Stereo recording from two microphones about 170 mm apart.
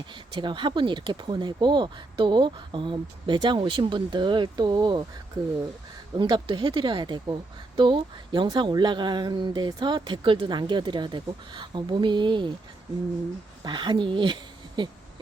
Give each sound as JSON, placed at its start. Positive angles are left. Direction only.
{"t": 0.3, "sound": "speech", "side_deg": -30}
{"t": 6.1, "sound": "speech", "side_deg": -25}
{"t": 13.7, "sound": "speech", "side_deg": -25}